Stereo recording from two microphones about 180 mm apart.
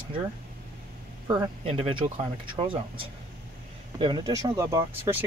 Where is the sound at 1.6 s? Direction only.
30° right (ahead or behind).